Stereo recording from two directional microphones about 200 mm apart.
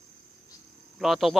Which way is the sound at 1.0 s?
Centre (ahead or behind).